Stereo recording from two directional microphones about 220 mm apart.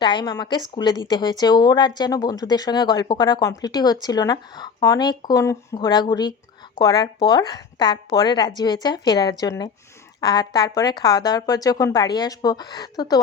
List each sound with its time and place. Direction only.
0.0 s a woman's voice: 20° left (ahead or behind)